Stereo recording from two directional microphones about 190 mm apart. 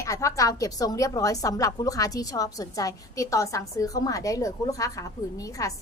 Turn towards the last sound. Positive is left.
turn(degrees=15)  # may be behind; listen again after turning